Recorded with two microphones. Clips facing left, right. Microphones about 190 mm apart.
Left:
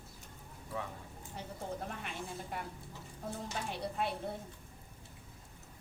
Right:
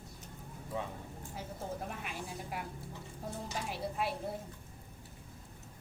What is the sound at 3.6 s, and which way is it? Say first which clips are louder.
Speech: even; 5° right (ahead or behind).